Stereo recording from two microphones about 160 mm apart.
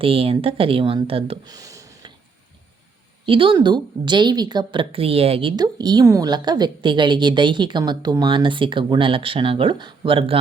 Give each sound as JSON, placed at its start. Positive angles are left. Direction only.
{"t": 0.0, "sound": "a woman's voice", "side_deg": -35}
{"t": 1.5, "sound": "a sound", "side_deg": -20}
{"t": 3.2, "sound": "a woman's voice", "side_deg": -35}